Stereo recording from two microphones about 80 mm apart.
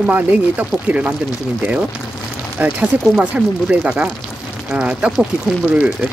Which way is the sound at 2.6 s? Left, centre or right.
Centre.